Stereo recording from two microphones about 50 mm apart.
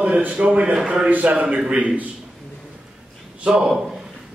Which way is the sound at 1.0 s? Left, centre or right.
Right.